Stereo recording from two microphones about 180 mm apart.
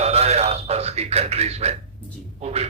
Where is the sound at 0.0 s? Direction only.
35° right (ahead or behind).